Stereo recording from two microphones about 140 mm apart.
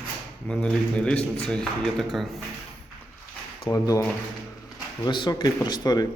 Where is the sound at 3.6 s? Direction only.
25° left (ahead or behind).